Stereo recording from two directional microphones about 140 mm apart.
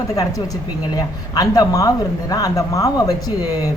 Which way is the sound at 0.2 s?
25° left (ahead or behind).